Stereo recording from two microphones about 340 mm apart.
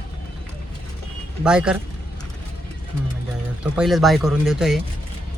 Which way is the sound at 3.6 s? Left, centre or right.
Centre.